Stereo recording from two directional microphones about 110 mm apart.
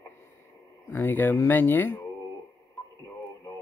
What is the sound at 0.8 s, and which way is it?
A man's voice, 20° left (ahead or behind).